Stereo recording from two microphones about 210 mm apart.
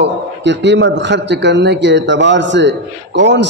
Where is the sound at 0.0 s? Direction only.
55° right (ahead or behind).